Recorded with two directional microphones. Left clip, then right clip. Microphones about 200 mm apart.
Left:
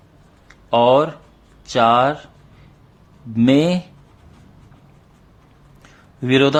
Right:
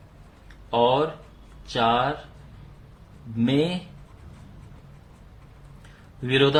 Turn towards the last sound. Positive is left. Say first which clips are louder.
# left 5 dB
turn(degrees=40)  # may be behind; listen again after turning